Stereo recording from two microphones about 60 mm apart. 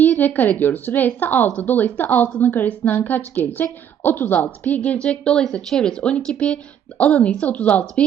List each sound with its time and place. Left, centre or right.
0.0 s a woman's voice: left